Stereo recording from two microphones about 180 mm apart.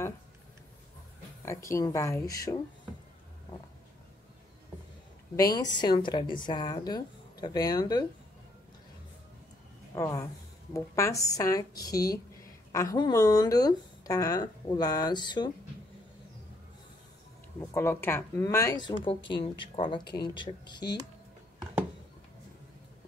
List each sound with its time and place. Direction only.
1.4 s speech: 15° left (ahead or behind)
5.3 s speech: 20° left (ahead or behind)
9.9 s speech: 15° left (ahead or behind)
17.6 s speech: 15° left (ahead or behind)